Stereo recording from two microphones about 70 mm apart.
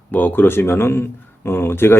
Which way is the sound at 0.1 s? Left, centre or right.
Left.